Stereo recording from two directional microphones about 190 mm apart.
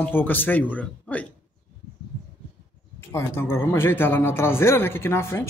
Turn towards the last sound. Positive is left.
turn(degrees=15)  # may be behind; listen again after turning